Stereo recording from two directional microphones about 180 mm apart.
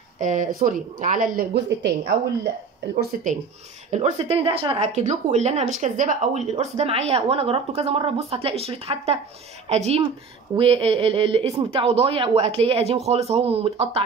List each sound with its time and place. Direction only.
0.2 s speech: 45° right (ahead or behind); by 2.1 s 65° right (ahead or behind)
3.0 s speech: 55° right (ahead or behind)
3.9 s speech: 35° right (ahead or behind)